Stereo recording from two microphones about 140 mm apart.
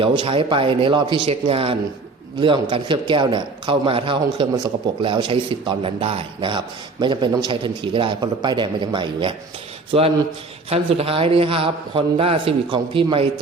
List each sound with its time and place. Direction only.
0.0 s a man's voice: 35° right (ahead or behind)
10.7 s a man's voice: 45° right (ahead or behind)